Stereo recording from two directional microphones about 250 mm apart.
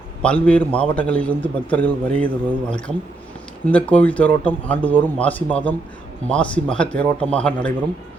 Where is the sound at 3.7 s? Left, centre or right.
Centre.